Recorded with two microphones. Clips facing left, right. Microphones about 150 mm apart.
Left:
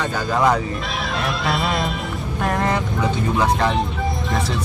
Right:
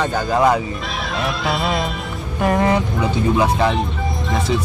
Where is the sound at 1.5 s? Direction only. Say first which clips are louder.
Right 1 dB; centre (ahead or behind).